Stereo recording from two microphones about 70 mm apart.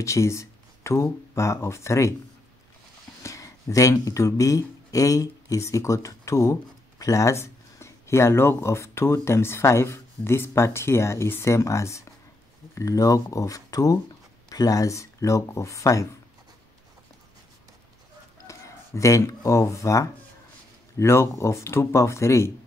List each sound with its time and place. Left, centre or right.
0.0 s speech: left
3.2 s speech: left
18.5 s speech: left